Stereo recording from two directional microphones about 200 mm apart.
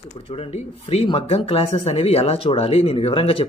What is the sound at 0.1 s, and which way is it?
Speech, 30° left (ahead or behind).